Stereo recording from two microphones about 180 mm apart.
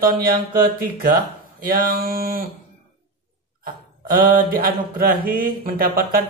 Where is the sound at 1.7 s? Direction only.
55° right (ahead or behind).